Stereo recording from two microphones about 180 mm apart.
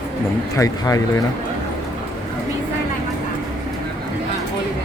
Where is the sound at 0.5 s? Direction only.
20° left (ahead or behind).